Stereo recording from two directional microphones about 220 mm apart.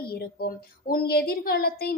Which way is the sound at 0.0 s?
45° left (ahead or behind).